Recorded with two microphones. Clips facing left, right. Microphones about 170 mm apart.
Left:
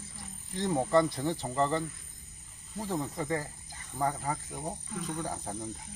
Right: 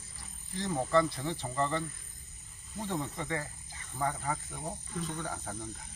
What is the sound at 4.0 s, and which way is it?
Speech, 25° left (ahead or behind).